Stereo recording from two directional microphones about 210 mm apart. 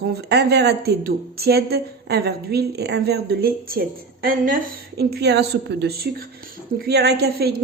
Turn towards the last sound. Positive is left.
turn(degrees=-50)  # may be behind; listen again after turning